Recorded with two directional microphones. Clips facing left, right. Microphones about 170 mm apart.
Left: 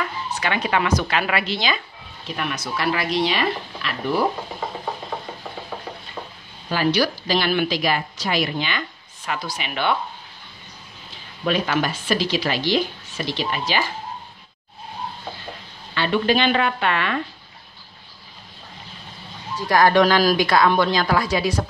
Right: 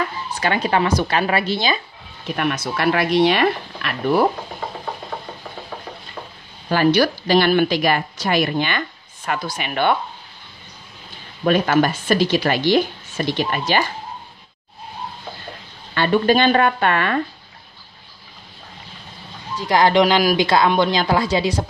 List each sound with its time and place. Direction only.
0.3 s speech: 35° right (ahead or behind)
2.2 s speech: 55° right (ahead or behind)
6.7 s a woman's voice: 50° right (ahead or behind)
11.4 s a woman's voice: 50° right (ahead or behind)
15.9 s a woman's voice: 50° right (ahead or behind)
19.7 s a woman's voice: 20° right (ahead or behind)